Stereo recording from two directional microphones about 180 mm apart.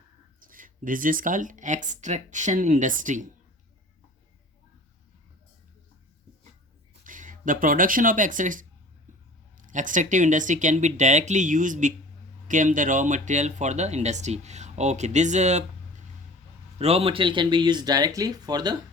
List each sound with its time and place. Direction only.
0.3 s speech: 50° right (ahead or behind)
7.0 s speech: 45° right (ahead or behind)
16.7 s speech: 35° right (ahead or behind)